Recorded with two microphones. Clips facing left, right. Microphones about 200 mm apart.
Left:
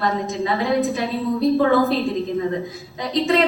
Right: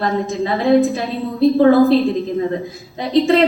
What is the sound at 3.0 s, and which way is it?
Speech, 30° right (ahead or behind).